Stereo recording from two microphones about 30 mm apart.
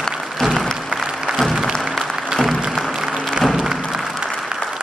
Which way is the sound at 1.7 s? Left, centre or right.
Centre.